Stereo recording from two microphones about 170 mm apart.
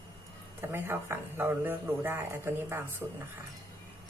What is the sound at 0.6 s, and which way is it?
Speech, 10° right (ahead or behind).